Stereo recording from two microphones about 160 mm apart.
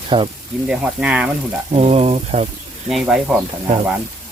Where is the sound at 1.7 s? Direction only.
40° right (ahead or behind).